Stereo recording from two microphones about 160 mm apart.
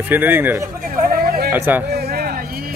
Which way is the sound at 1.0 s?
65° right (ahead or behind).